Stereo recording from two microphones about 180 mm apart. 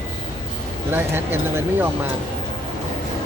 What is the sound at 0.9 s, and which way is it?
Speech, 10° right (ahead or behind).